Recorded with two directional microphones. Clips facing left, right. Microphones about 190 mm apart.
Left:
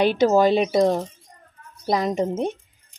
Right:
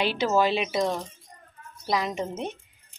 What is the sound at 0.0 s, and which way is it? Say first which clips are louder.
Speech: left 7 dB; 45° left (ahead or behind).